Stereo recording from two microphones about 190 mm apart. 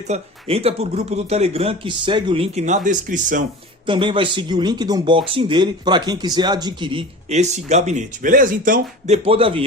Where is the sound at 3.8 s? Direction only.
25° right (ahead or behind).